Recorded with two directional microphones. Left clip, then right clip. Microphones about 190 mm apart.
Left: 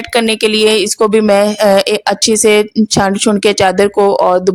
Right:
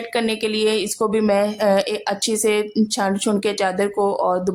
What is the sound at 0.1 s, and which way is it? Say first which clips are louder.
Speech: left 10 dB; 45° left (ahead or behind).